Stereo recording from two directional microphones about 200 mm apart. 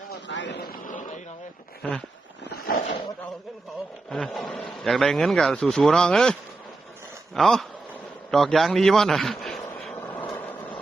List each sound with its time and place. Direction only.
0.1 s vehicle: 65° left (ahead or behind)
0.9 s a sound: 40° left (ahead or behind)
2.4 s wild animals: 50° left (ahead or behind)
4.1 s a man's voice: centre (ahead or behind)
7.3 s a man's voice: centre (ahead or behind)
8.3 s a sound: centre (ahead or behind)